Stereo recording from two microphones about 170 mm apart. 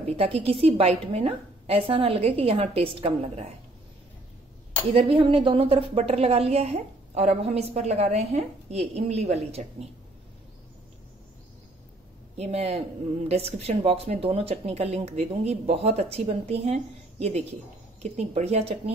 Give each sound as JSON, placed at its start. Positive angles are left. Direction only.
{"t": 0.2, "sound": "a woman's voice", "side_deg": -35}
{"t": 4.9, "sound": "a woman's voice", "side_deg": -35}
{"t": 12.4, "sound": "a woman's voice", "side_deg": -40}